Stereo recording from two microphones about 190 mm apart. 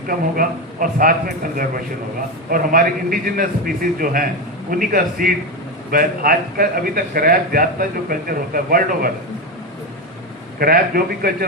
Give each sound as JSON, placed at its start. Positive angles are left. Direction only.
{"t": 0.1, "sound": "a man's voice", "side_deg": -45}
{"t": 10.6, "sound": "a man's voice", "side_deg": -50}